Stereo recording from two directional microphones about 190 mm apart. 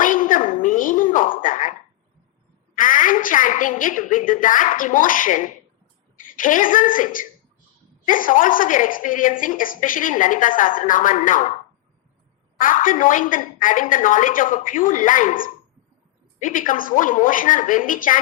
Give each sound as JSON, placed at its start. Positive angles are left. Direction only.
{"t": 0.0, "sound": "a sound", "side_deg": 45}
{"t": 2.7, "sound": "a woman's voice", "side_deg": 45}
{"t": 12.5, "sound": "a woman's voice", "side_deg": 45}